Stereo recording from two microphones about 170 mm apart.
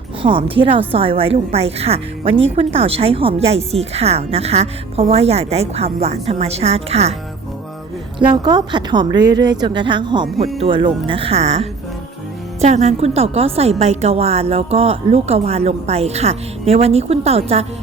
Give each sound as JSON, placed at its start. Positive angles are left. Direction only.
{"t": 0.2, "sound": "a woman's voice", "side_deg": -30}
{"t": 8.2, "sound": "a woman's voice", "side_deg": -25}